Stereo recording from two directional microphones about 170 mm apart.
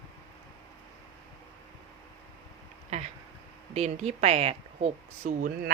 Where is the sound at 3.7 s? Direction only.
40° right (ahead or behind).